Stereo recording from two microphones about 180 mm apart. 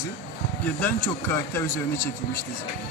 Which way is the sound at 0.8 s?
15° left (ahead or behind).